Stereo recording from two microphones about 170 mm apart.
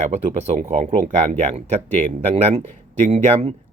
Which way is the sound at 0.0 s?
40° right (ahead or behind).